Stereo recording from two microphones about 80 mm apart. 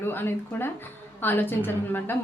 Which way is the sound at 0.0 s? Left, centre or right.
Left.